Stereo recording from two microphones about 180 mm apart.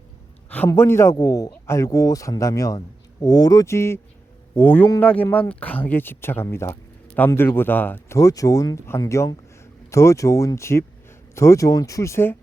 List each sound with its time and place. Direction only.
0.5 s speech: 10° left (ahead or behind)